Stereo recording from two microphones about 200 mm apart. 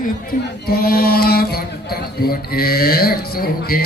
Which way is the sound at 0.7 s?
50° left (ahead or behind).